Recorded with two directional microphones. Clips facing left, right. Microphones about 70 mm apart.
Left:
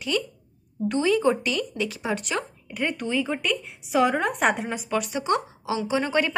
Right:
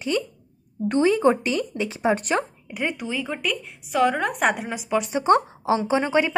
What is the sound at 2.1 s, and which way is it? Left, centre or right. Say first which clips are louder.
Speech: right 7 dB; right.